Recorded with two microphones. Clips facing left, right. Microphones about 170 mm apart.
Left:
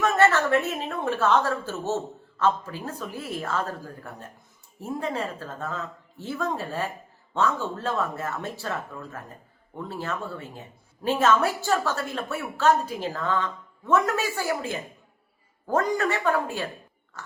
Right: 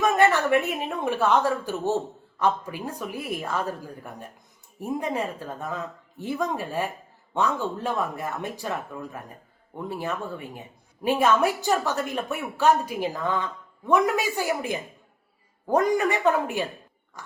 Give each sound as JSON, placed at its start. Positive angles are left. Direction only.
{"t": 0.0, "sound": "a woman's voice", "side_deg": -15}